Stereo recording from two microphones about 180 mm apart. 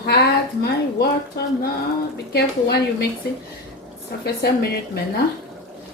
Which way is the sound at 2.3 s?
65° left (ahead or behind).